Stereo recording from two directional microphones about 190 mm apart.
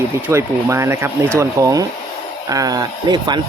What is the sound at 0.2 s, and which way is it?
Speech, 15° right (ahead or behind).